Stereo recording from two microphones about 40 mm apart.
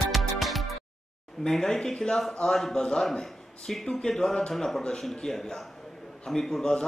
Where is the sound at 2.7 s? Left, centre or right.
Centre.